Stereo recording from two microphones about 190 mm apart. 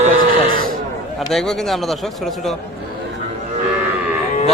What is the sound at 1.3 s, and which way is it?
Livestock, centre (ahead or behind).